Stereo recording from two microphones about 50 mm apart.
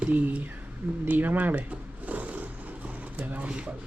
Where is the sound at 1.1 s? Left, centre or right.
Right.